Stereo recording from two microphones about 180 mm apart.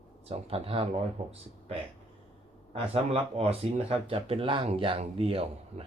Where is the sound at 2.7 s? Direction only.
30° right (ahead or behind).